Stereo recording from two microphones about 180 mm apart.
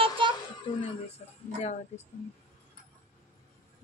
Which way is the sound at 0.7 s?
30° left (ahead or behind).